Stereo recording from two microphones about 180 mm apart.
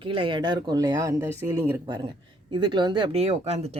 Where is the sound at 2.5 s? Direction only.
25° right (ahead or behind).